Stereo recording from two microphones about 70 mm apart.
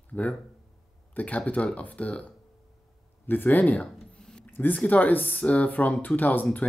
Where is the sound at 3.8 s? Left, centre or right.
Centre.